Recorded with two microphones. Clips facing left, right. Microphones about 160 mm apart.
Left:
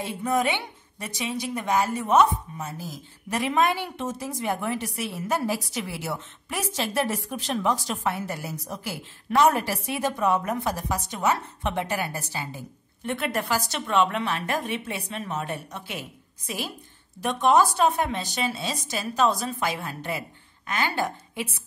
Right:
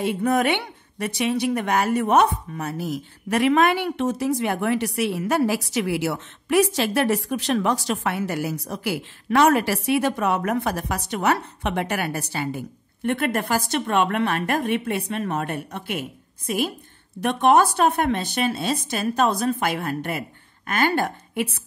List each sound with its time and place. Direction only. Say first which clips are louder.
0.0 s a woman's voice: right 4 dB; 65° right (ahead or behind)